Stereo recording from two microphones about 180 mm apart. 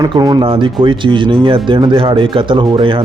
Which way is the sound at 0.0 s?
20° right (ahead or behind).